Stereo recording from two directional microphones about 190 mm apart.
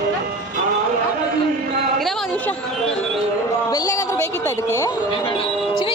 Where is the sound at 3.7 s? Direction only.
20° left (ahead or behind).